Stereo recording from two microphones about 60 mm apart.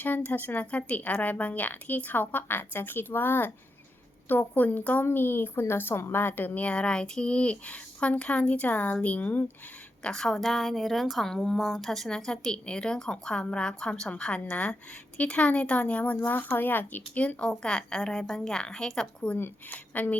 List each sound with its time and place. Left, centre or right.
0.0 s speech: left
5.0 s a woman's voice: left
10.0 s speech: centre
11.5 s speech: centre; by 17.0 s left
17.2 s speech: centre
19.7 s speech: left